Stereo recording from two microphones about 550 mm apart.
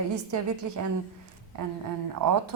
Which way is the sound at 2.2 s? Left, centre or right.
Right.